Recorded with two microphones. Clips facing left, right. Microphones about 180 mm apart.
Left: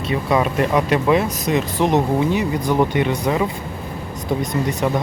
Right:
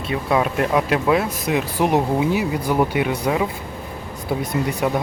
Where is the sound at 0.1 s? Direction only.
Centre (ahead or behind).